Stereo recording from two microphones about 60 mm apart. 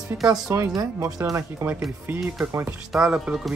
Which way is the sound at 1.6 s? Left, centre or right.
Right.